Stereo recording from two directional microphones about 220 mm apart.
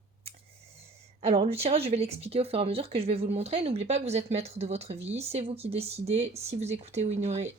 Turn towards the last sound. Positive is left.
turn(degrees=-30)  # may be behind; listen again after turning